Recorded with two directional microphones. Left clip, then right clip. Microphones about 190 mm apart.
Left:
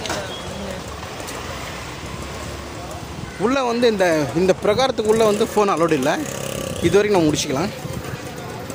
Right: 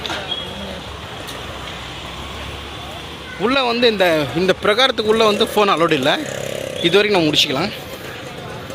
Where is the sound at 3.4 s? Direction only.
15° left (ahead or behind).